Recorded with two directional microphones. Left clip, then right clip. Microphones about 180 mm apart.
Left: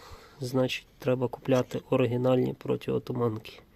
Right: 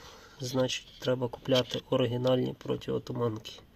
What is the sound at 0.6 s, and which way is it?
Speech, 30° left (ahead or behind).